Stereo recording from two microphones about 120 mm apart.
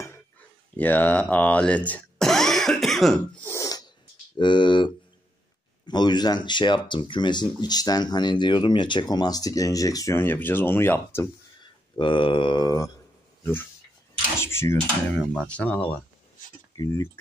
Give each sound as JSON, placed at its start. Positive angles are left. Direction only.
{"t": 0.7, "sound": "speech", "side_deg": 15}
{"t": 3.4, "sound": "snort", "side_deg": 30}
{"t": 4.4, "sound": "speech", "side_deg": 40}
{"t": 12.0, "sound": "mantra", "side_deg": 45}
{"t": 13.4, "sound": "speech", "side_deg": 15}
{"t": 14.4, "sound": "a sound", "side_deg": 20}
{"t": 15.1, "sound": "speech", "side_deg": 10}
{"t": 16.7, "sound": "speech", "side_deg": 25}